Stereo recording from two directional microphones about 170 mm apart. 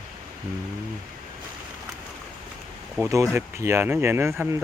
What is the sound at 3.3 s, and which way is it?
Speech, 15° right (ahead or behind).